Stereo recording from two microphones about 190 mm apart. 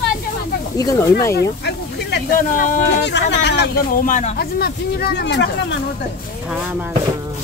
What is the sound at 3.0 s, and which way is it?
Speech, 65° left (ahead or behind).